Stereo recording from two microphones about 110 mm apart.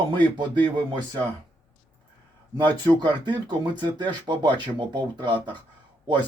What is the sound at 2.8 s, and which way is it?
Speech, 45° right (ahead or behind).